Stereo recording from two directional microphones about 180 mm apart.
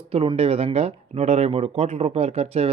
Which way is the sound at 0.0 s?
30° right (ahead or behind).